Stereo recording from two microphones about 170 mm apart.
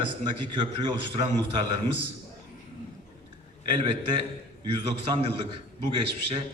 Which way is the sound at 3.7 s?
30° right (ahead or behind).